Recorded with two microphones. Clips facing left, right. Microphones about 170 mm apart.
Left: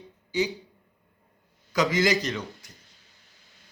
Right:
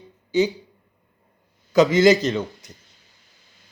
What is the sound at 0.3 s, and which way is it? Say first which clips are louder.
Speech: right 7 dB; 25° right (ahead or behind).